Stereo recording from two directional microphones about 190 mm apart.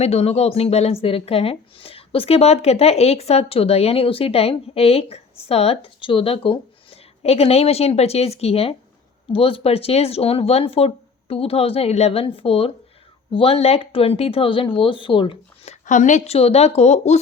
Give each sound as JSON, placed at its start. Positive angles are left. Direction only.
{"t": 0.0, "sound": "a woman's voice", "side_deg": 35}